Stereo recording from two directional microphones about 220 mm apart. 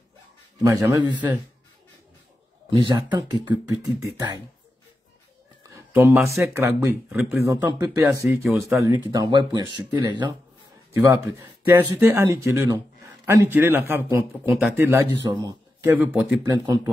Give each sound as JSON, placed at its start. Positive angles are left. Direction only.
{"t": 0.6, "sound": "speech", "side_deg": -15}
{"t": 2.7, "sound": "speech", "side_deg": -20}
{"t": 5.6, "sound": "a man's voice", "side_deg": -10}
{"t": 16.0, "sound": "speech", "side_deg": -5}
{"t": 16.4, "sound": "speech", "side_deg": -20}